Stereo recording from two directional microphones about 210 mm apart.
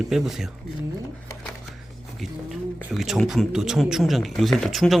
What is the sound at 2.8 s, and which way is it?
Speech, 5° right (ahead or behind).